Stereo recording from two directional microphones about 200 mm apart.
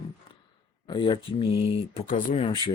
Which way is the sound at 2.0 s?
35° left (ahead or behind).